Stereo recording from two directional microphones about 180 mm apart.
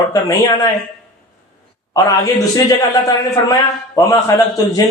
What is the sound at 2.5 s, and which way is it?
A man's voice, 20° left (ahead or behind).